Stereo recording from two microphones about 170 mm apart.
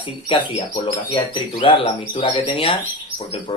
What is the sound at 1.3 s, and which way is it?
Speech, 35° left (ahead or behind).